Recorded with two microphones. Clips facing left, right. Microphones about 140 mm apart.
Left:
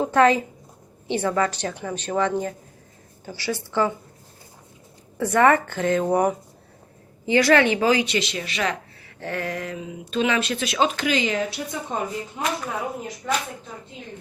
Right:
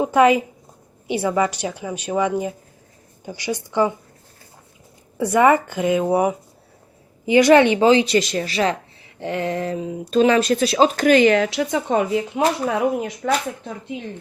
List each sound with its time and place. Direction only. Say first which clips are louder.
0.0 s speech: right 3 dB; 10° right (ahead or behind)
5.1 s speech: right 2 dB; 10° right (ahead or behind)
7.3 s speech: right 5 dB; 20° right (ahead or behind)
8.0 s speech: right 7 dB; 40° right (ahead or behind)
9.2 s speech: right 5 dB; 20° right (ahead or behind); by 12.4 s 85° right
12.6 s speech: right 9 dB; 75° right (ahead or behind)